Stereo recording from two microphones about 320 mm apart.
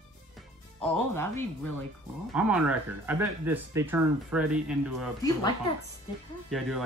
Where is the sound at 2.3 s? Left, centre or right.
Centre.